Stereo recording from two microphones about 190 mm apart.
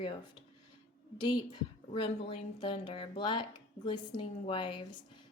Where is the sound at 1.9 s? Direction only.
25° left (ahead or behind).